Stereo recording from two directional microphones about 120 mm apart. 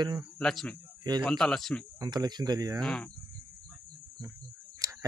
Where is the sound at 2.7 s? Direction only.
5° left (ahead or behind).